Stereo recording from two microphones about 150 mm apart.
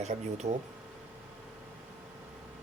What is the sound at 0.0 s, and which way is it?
Speech, 50° right (ahead or behind).